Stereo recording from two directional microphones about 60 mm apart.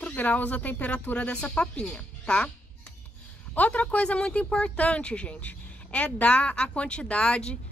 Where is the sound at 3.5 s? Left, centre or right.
Left.